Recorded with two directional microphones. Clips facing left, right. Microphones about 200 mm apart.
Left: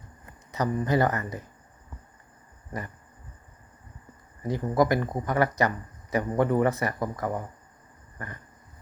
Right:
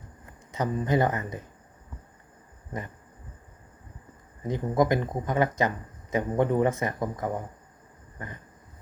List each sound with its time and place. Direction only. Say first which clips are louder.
0.5 s speech: left 1 dB; 20° right (ahead or behind)
4.4 s speech: even; 20° right (ahead or behind)